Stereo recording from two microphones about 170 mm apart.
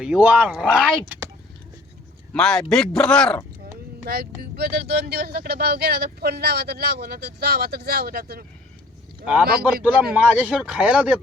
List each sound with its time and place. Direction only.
0.0 s speech: 5° right (ahead or behind)
2.3 s speech: 5° left (ahead or behind)
4.0 s speech: 65° right (ahead or behind)
9.8 s speech: 10° right (ahead or behind)